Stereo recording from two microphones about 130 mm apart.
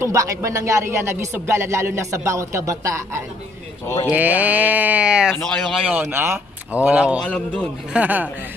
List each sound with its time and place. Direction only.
0.0 s speech: 25° right (ahead or behind)
3.8 s speech: 20° left (ahead or behind)
4.1 s speech: 10° right (ahead or behind)
5.4 s speech: 5° left (ahead or behind)
6.0 s speech: 20° right (ahead or behind)
7.2 s a man's voice: 10° left (ahead or behind)
7.9 s speech: 10° right (ahead or behind)